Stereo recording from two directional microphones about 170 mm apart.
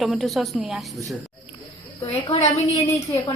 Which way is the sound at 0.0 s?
Centre (ahead or behind).